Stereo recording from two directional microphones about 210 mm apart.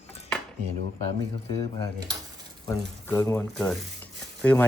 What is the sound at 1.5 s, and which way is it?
Speech, 15° left (ahead or behind).